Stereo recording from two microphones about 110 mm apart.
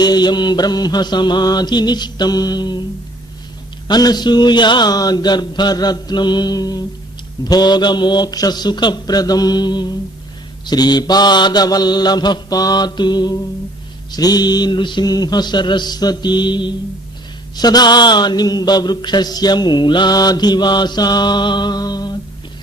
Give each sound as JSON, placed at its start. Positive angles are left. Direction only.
{"t": 0.0, "sound": "mantra", "side_deg": 40}
{"t": 3.8, "sound": "mantra", "side_deg": 40}